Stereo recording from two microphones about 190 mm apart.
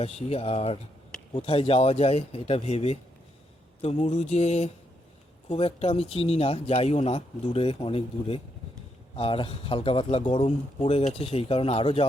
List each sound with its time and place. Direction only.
0.0 s speech: 35° left (ahead or behind)